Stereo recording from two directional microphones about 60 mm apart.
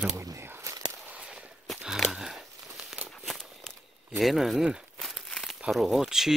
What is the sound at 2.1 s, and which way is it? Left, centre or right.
Crumpling, centre.